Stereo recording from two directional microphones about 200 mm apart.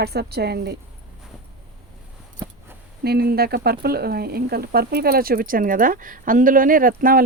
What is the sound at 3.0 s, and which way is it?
Speech, 50° right (ahead or behind).